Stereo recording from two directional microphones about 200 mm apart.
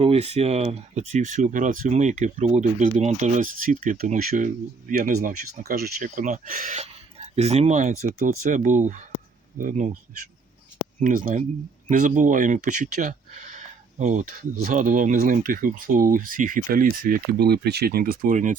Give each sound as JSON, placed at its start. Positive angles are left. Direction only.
{"t": 0.0, "sound": "speech", "side_deg": -30}
{"t": 11.0, "sound": "speech", "side_deg": -45}